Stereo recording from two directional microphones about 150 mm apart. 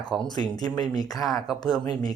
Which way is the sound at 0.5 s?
25° left (ahead or behind).